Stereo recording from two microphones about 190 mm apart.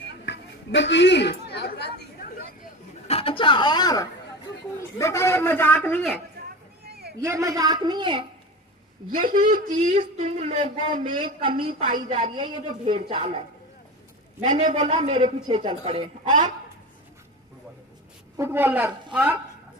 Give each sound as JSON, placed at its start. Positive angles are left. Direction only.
{"t": 0.3, "sound": "chatter", "side_deg": 70}
{"t": 3.1, "sound": "a man's voice", "side_deg": 30}
{"t": 6.4, "sound": "a sound", "side_deg": -55}
{"t": 7.2, "sound": "a man's voice", "side_deg": -15}
{"t": 9.1, "sound": "a woman's voice", "side_deg": -45}
{"t": 9.8, "sound": "a man's voice", "side_deg": -35}
{"t": 11.8, "sound": "a woman's voice", "side_deg": -45}
{"t": 12.0, "sound": "a man's voice", "side_deg": -30}
{"t": 14.4, "sound": "a man's voice", "side_deg": -40}
{"t": 18.3, "sound": "a woman's voice", "side_deg": -10}